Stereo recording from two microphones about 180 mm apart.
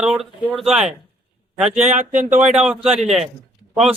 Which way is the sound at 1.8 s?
40° right (ahead or behind).